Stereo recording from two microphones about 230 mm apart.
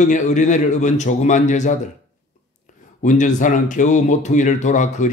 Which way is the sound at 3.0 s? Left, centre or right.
Left.